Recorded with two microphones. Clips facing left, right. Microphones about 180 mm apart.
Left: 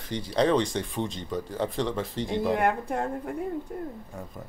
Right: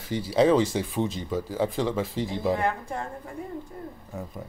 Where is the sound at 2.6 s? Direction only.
60° left (ahead or behind).